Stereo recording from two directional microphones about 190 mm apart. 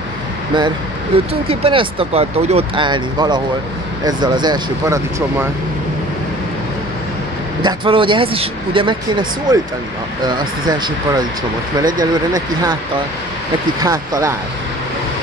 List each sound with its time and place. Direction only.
1.1 s speech: 30° right (ahead or behind); by 5.5 s 15° right (ahead or behind)
7.6 s speech: 25° right (ahead or behind)
13.8 s speech: 20° right (ahead or behind)